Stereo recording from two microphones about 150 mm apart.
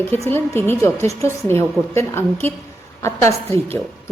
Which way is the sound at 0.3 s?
15° left (ahead or behind).